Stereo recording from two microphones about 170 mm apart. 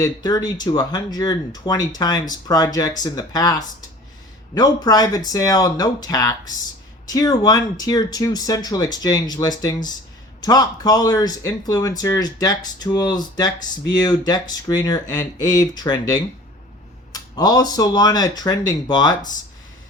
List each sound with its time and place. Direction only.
0.0 s speech: 25° left (ahead or behind)
4.5 s speech: 25° left (ahead or behind)